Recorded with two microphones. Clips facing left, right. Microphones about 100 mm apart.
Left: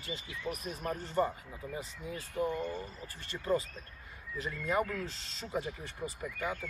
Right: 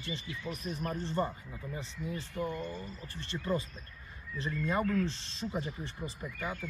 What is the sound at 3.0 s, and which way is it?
Speech, 30° right (ahead or behind).